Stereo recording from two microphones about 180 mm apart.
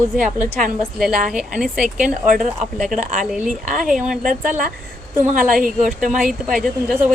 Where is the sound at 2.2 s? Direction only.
50° right (ahead or behind).